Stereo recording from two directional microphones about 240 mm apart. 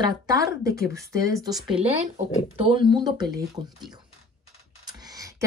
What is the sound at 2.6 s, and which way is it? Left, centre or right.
Speech, right.